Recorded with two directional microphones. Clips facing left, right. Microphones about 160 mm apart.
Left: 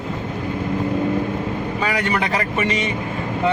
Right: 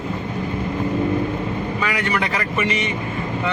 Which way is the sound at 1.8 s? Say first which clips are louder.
Left 2 dB; 40° left (ahead or behind).